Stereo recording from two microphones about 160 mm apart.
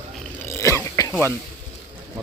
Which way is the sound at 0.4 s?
20° left (ahead or behind).